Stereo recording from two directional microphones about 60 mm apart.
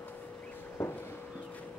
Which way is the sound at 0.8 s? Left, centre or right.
Left.